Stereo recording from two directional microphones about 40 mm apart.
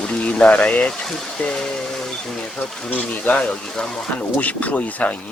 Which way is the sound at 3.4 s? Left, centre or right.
Left.